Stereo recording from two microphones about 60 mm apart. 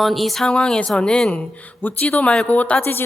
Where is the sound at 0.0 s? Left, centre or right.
Centre.